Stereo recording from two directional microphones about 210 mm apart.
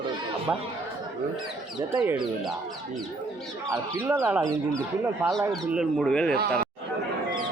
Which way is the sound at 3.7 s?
10° right (ahead or behind).